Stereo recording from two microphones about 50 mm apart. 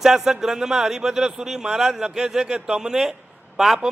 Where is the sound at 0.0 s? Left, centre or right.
Centre.